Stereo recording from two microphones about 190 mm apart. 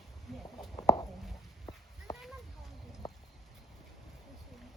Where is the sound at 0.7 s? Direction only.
20° left (ahead or behind).